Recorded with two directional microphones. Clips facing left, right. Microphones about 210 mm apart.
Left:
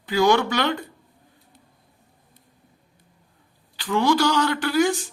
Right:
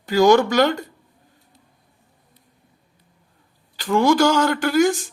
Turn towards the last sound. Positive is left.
turn(degrees=-45)  # may be behind; listen again after turning